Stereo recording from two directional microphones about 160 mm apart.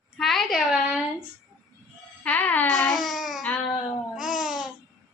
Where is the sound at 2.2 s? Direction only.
10° left (ahead or behind).